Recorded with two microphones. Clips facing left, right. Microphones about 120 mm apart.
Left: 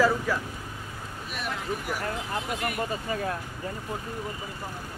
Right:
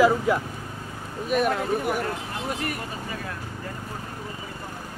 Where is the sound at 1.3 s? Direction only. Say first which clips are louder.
Right 10 dB; 50° right (ahead or behind).